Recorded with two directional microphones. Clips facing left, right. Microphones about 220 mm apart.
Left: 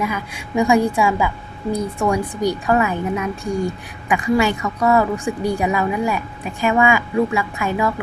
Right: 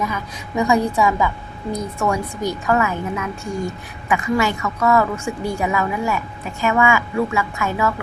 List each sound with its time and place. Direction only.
0.0 s a woman's voice: 10° left (ahead or behind)